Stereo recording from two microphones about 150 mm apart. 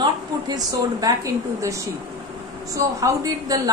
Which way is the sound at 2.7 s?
20° right (ahead or behind).